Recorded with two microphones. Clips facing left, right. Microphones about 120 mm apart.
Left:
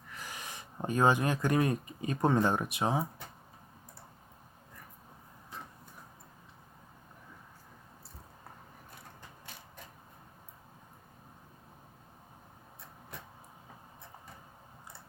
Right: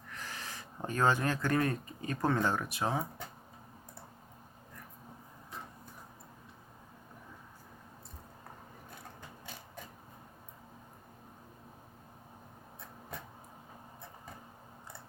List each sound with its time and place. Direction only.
0.1 s speech: 10° left (ahead or behind)